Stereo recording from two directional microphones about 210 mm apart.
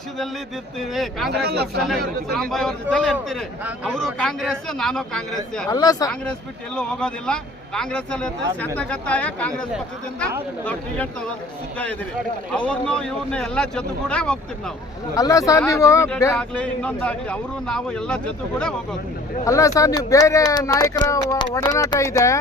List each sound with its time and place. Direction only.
0.8 s a man's voice: centre (ahead or behind)
1.3 s speech: 50° right (ahead or behind)
2.3 s a man's voice: centre (ahead or behind)
5.6 s speech: 20° left (ahead or behind)
6.7 s a man's voice: 5° left (ahead or behind)
12.5 s a man's voice: 5° left (ahead or behind)
15.1 s a man's voice: 15° left (ahead or behind)
19.5 s speech: 15° left (ahead or behind)